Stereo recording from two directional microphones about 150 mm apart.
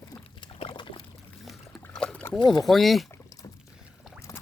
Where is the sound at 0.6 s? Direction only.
35° left (ahead or behind).